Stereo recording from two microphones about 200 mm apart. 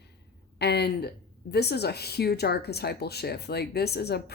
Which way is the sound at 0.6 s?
55° left (ahead or behind).